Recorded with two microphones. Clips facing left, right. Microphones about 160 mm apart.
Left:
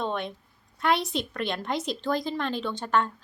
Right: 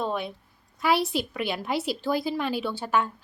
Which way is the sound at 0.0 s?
5° right (ahead or behind).